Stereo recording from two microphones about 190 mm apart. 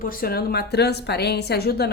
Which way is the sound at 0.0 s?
50° left (ahead or behind).